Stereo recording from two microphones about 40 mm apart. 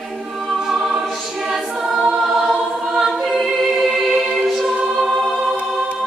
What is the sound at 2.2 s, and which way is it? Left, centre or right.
Choir, centre.